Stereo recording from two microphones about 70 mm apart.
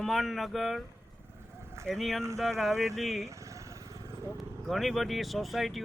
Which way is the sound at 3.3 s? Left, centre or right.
Right.